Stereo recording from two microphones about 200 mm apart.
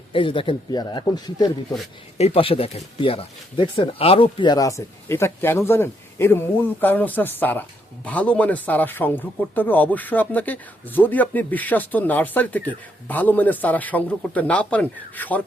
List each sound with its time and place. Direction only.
0.1 s a man's voice: 25° left (ahead or behind); by 15.4 s 10° left (ahead or behind)